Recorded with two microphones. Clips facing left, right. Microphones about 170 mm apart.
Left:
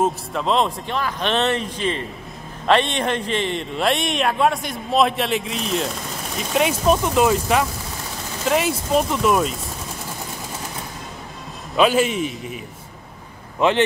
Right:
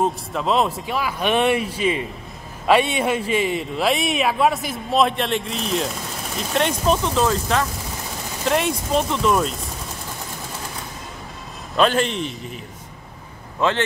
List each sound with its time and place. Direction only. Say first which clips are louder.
0.0 s a man's voice: left 1 dB; centre (ahead or behind)
11.7 s a man's voice: left 2 dB; 5° left (ahead or behind)
13.6 s speech: left 3 dB; 15° left (ahead or behind)